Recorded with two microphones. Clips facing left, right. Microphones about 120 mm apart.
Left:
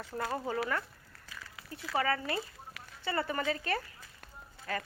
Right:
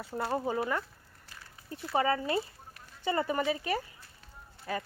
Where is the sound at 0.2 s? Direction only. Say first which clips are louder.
Right 3 dB; 20° right (ahead or behind).